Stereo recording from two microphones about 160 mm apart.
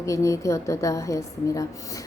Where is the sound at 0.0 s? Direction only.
20° left (ahead or behind).